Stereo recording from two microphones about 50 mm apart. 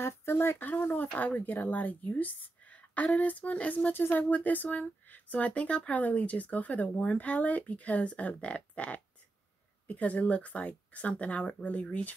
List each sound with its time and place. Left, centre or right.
0.0 s speech: left
0.7 s speech: left
3.9 s speech: left
4.2 s speech: left